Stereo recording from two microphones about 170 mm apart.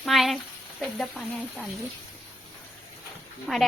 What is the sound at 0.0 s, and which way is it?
Sizzle, centre (ahead or behind).